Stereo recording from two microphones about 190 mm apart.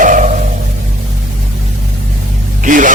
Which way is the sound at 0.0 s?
40° right (ahead or behind).